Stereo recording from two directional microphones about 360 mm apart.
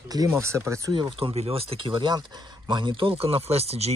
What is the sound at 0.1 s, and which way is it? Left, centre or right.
Speech, centre.